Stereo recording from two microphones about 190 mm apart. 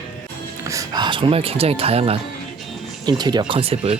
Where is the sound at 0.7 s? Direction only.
20° right (ahead or behind).